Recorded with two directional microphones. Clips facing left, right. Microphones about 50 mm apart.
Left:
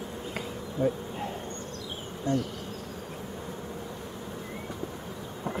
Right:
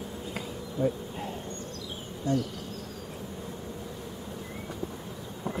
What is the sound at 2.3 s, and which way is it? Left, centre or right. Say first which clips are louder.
Bee: even; left.